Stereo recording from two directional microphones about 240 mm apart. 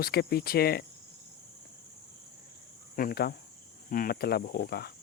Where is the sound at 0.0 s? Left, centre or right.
Left.